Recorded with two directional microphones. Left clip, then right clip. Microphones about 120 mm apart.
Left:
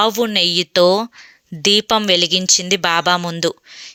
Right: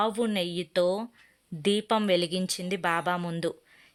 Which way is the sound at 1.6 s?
30° left (ahead or behind).